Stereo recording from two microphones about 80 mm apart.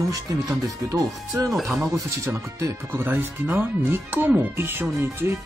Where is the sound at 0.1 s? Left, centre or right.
Right.